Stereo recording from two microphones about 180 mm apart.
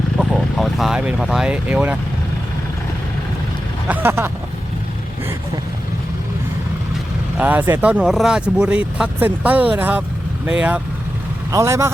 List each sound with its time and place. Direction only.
0.2 s speech: centre (ahead or behind)
3.8 s speech: 10° right (ahead or behind)
7.3 s speech: 10° right (ahead or behind)